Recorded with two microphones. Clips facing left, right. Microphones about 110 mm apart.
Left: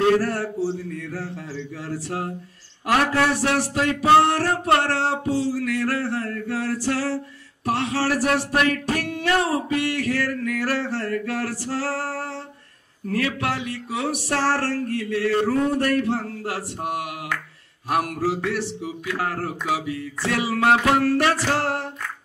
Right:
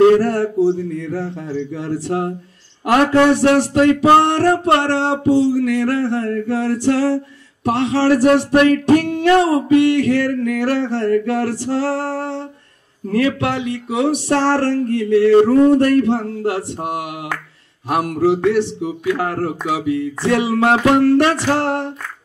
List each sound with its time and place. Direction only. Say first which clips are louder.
0.2 s speech: right 9 dB; 25° right (ahead or behind)